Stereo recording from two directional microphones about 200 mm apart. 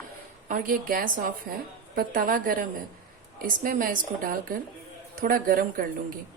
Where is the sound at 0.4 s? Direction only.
40° right (ahead or behind).